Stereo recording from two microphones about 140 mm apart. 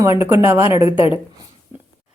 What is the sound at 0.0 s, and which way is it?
Speech, 20° right (ahead or behind).